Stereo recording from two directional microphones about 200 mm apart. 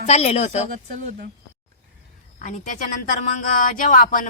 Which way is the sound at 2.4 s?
40° left (ahead or behind).